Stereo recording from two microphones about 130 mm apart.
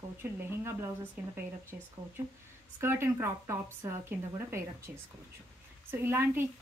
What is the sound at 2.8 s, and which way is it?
Speech, 20° right (ahead or behind).